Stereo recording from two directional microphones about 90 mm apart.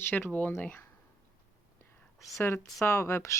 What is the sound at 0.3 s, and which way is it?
Speech, 15° left (ahead or behind).